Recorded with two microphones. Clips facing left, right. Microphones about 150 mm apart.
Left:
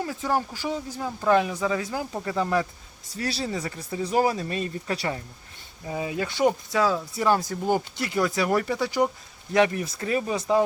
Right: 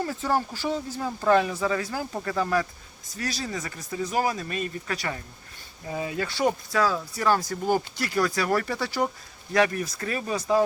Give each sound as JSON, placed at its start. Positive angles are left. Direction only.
{"t": 0.0, "sound": "speech", "side_deg": 10}
{"t": 5.9, "sound": "speech", "side_deg": 15}